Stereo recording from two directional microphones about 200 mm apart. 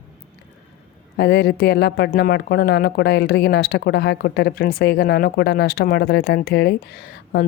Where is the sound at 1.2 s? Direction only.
55° left (ahead or behind).